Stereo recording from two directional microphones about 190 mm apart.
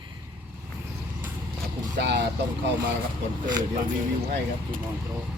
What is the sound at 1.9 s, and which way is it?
Vehicle, 65° right (ahead or behind).